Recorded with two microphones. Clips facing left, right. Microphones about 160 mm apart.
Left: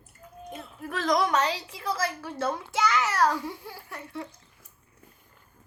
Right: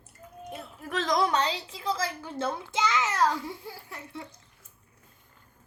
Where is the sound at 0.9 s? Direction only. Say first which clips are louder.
Left 1 dB; 25° right (ahead or behind).